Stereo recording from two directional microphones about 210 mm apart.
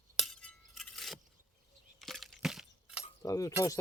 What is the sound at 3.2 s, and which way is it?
Speech, 15° left (ahead or behind).